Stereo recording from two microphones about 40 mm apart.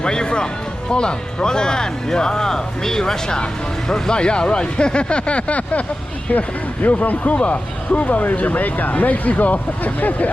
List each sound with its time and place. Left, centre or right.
0.0 s speech: centre; by 10.2 s left